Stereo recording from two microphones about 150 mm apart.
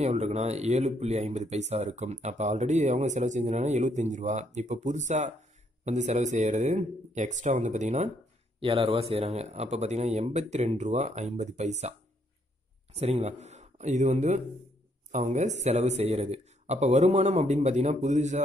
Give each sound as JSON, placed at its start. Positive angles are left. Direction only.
{"t": 0.0, "sound": "speech", "side_deg": -45}
{"t": 8.5, "sound": "speech", "side_deg": -40}
{"t": 12.9, "sound": "speech", "side_deg": -45}